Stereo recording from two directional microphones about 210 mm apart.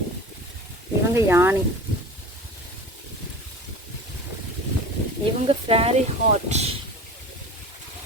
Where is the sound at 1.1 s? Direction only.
10° right (ahead or behind).